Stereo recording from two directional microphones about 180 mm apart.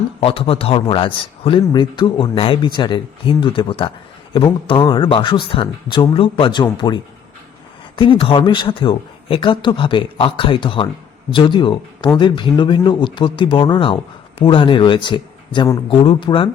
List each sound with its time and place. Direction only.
0.2 s speech: 30° left (ahead or behind)